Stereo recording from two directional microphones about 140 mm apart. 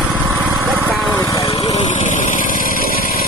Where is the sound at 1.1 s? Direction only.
20° left (ahead or behind).